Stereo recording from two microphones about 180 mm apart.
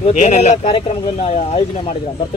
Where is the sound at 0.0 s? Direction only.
40° left (ahead or behind).